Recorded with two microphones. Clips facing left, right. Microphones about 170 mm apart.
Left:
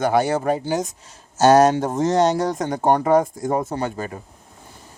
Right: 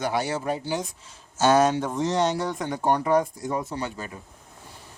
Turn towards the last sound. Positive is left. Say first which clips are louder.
# left 6 dB
turn(degrees=50)  # may be behind; listen again after turning